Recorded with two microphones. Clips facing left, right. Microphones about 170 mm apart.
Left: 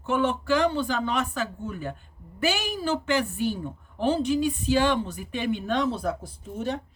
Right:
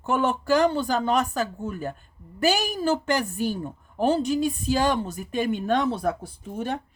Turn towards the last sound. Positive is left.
turn(degrees=-60)  # may be behind; listen again after turning